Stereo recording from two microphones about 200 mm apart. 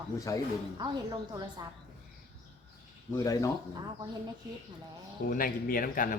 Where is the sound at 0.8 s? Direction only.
20° right (ahead or behind).